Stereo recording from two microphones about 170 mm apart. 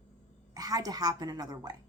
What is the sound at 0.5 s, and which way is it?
A woman's voice, 20° right (ahead or behind).